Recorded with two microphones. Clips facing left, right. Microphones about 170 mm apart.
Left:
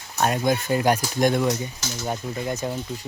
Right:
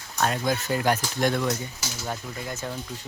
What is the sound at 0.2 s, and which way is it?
Speech, 20° left (ahead or behind).